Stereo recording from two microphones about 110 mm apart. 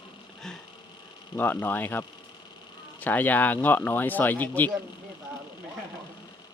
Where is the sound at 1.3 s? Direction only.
15° left (ahead or behind).